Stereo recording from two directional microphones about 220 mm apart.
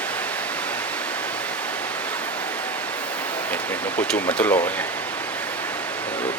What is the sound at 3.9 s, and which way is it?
Speech, 5° left (ahead or behind).